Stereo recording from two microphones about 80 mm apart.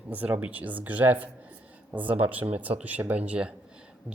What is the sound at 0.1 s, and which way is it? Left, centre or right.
A man's voice, centre.